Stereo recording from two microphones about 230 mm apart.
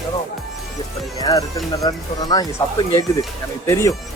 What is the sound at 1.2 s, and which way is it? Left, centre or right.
Speech, centre.